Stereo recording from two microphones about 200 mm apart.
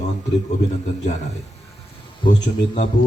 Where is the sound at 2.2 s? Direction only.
25° left (ahead or behind).